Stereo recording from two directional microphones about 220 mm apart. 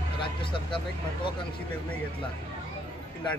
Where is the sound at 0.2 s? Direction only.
25° left (ahead or behind).